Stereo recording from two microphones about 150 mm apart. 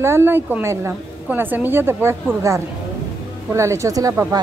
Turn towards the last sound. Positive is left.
turn(degrees=-20)  # may be behind; listen again after turning